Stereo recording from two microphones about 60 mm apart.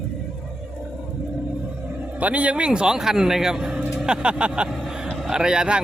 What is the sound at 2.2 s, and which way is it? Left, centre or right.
A man's voice, right.